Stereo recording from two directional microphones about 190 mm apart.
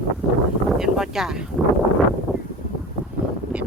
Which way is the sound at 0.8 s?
Centre (ahead or behind).